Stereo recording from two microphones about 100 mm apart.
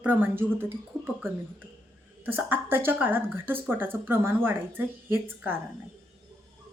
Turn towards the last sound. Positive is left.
turn(degrees=-20)  # may be behind; listen again after turning